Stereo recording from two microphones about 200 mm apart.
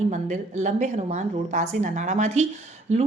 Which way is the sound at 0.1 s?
35° right (ahead or behind).